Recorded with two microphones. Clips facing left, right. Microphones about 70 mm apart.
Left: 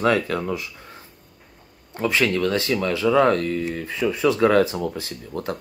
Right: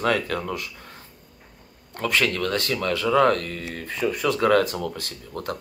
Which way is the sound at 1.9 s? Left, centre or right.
Centre.